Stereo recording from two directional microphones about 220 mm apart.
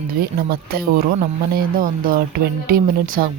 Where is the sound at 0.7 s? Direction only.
45° right (ahead or behind).